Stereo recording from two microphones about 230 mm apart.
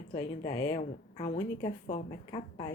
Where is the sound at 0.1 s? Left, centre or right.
Left.